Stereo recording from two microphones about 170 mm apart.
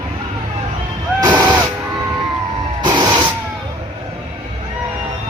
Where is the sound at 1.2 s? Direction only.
20° right (ahead or behind).